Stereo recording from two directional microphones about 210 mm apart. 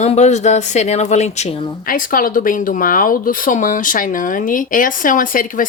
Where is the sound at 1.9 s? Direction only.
40° left (ahead or behind).